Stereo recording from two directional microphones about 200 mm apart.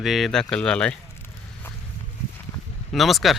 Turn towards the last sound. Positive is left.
turn(degrees=0)  # may be behind; listen again after turning